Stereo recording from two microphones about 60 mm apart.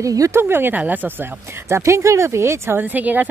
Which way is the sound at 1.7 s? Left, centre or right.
Right.